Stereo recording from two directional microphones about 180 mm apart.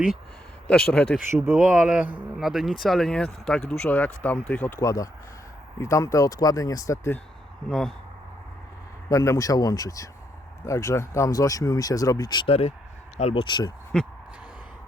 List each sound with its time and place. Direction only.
0.7 s speech: 5° left (ahead or behind)
7.7 s speech: 5° left (ahead or behind)
9.0 s speech: 15° left (ahead or behind)